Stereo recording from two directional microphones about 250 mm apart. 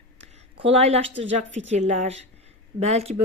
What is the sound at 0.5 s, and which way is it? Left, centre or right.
A woman's voice, right.